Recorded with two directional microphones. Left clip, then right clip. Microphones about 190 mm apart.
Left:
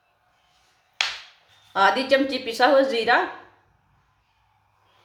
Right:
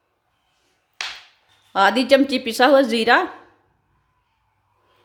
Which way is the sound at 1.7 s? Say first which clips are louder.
Right 3 dB; 55° right (ahead or behind).